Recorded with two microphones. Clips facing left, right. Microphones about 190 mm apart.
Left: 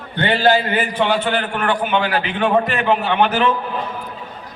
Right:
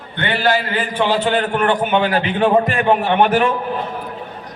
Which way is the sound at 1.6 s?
40° right (ahead or behind).